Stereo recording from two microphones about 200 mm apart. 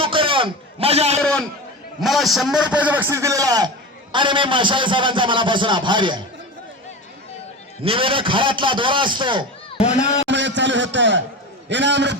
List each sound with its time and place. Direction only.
0.0 s a sound: 25° right (ahead or behind)
1.2 s a man's voice: 5° left (ahead or behind); by 6.2 s 25° right (ahead or behind)
7.8 s a man's voice: 25° right (ahead or behind)
9.7 s speech: 35° left (ahead or behind)
10.2 s a sound: 65° right (ahead or behind)
11.7 s a man's voice: 65° right (ahead or behind)